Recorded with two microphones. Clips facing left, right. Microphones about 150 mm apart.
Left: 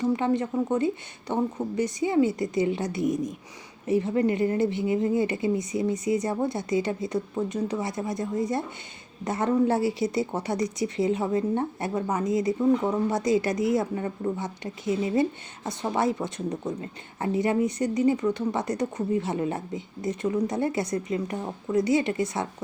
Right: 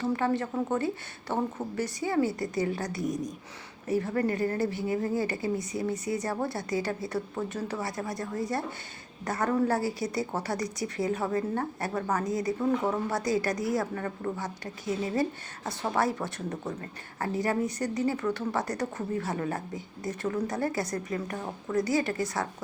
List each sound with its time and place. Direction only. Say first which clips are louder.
0.0 s a woman's voice: left 3 dB; 20° left (ahead or behind)